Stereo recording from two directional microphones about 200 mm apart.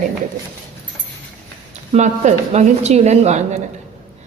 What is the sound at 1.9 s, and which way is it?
Speech, 35° right (ahead or behind).